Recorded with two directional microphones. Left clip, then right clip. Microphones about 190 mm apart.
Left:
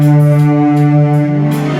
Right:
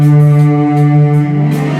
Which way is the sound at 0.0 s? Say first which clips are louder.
Left 1 dB; 40° left (ahead or behind).